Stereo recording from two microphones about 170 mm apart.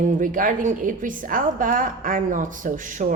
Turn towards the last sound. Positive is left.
turn(degrees=-50)  # may be behind; listen again after turning